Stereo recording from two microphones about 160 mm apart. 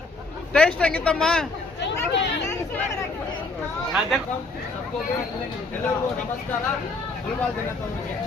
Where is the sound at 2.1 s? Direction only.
90° left.